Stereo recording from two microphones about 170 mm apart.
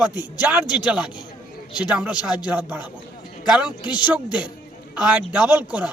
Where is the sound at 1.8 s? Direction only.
5° right (ahead or behind).